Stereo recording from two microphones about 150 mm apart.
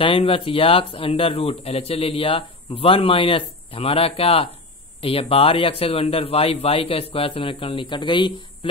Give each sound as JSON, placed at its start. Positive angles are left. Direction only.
{"t": 0.0, "sound": "speech", "side_deg": 40}